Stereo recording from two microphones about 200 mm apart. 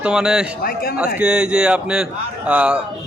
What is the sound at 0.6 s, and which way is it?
Speech, 50° left (ahead or behind).